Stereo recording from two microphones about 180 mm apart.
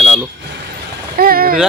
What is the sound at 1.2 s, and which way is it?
Vehicle, 55° right (ahead or behind).